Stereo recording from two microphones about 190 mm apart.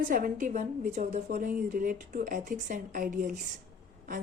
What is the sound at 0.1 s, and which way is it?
A woman's voice, 45° right (ahead or behind).